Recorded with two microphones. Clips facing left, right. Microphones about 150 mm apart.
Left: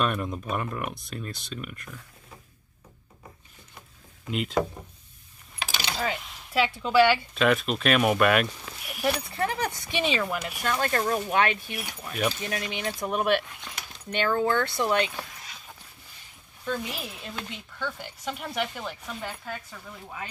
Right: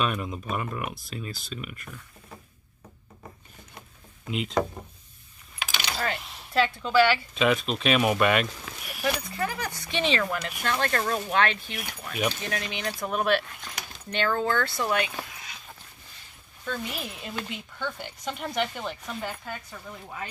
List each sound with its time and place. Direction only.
0.0 s speech: centre (ahead or behind)
4.3 s speech: centre (ahead or behind)
6.1 s a woman's voice: 10° left (ahead or behind)
7.3 s speech: centre (ahead or behind)
9.3 s speech: 25° left (ahead or behind)
9.9 s speech: 5° left (ahead or behind)
12.4 s speech: 15° left (ahead or behind)
16.6 s speech: centre (ahead or behind)